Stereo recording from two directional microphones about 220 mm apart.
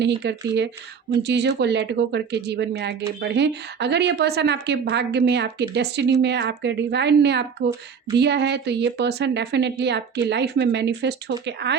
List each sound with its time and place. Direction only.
0.2 s speech: 50° right (ahead or behind)